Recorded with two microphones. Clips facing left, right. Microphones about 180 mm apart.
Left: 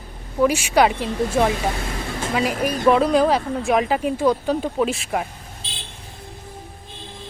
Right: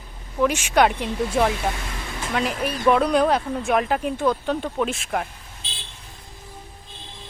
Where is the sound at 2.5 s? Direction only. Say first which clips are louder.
Left 4 dB; 40° left (ahead or behind).